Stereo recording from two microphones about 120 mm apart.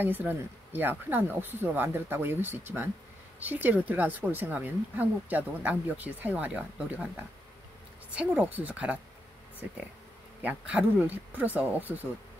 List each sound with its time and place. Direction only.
0.0 s speech: 15° right (ahead or behind)
8.1 s speech: 10° right (ahead or behind)
10.4 s speech: 10° right (ahead or behind)